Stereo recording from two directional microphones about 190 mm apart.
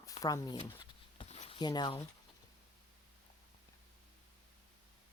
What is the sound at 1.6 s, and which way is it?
Speech, 25° left (ahead or behind).